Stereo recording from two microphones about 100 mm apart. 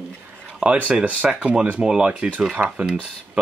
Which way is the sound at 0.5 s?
10° right (ahead or behind).